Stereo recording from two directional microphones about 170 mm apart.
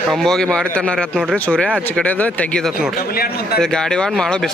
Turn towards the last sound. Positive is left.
turn(degrees=5)  # may be behind; listen again after turning